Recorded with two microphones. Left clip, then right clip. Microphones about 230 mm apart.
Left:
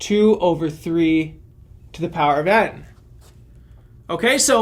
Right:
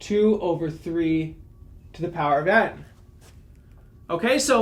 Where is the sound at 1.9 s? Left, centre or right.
Left.